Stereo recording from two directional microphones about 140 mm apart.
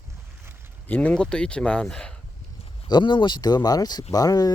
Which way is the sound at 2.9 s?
35° left (ahead or behind).